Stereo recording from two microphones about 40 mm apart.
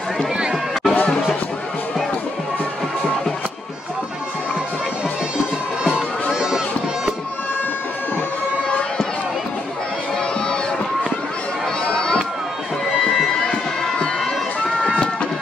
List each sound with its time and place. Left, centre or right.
0.4 s run: centre
6.3 s run: centre
11.9 s crowd: left
13.4 s crowd: centre